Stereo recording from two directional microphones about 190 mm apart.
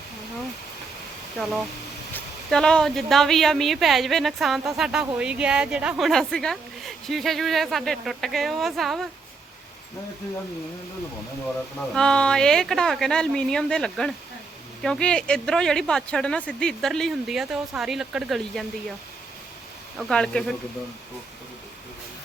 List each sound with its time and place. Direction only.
1.4 s a woman's voice: centre (ahead or behind)
11.9 s a woman's voice: 5° left (ahead or behind)
20.0 s a woman's voice: 5° left (ahead or behind)